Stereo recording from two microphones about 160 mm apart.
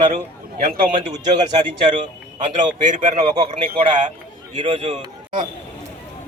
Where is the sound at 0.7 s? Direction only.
65° right (ahead or behind).